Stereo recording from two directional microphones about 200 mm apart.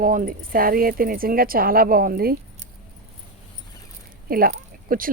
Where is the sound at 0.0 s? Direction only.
45° right (ahead or behind).